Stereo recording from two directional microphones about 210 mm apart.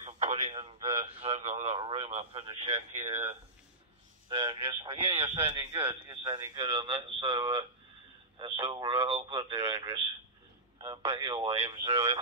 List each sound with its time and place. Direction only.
0.0 s radio: 35° right (ahead or behind)
1.2 s speech: 30° right (ahead or behind)
4.3 s speech: 25° right (ahead or behind)
5.3 s speech: 15° right (ahead or behind)